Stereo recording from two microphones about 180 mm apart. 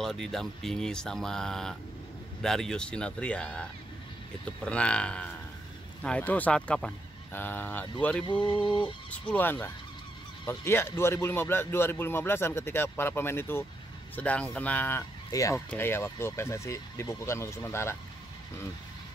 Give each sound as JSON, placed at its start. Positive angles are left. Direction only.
{"t": 0.0, "sound": "speech", "side_deg": 0}
{"t": 8.3, "sound": "a sound", "side_deg": 25}
{"t": 9.3, "sound": "speech", "side_deg": 10}